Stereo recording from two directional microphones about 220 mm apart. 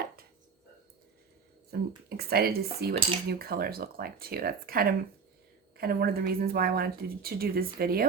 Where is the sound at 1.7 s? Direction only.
45° right (ahead or behind).